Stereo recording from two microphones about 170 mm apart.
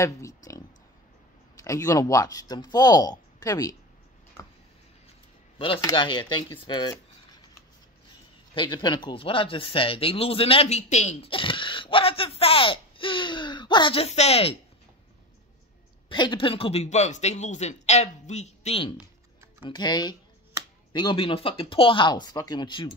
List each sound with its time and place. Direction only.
0.0 s speech: 20° left (ahead or behind)
1.6 s speech: 20° left (ahead or behind)
5.8 s speech: 25° left (ahead or behind)
8.1 s speech: 25° left (ahead or behind)
16.1 s speech: 25° left (ahead or behind)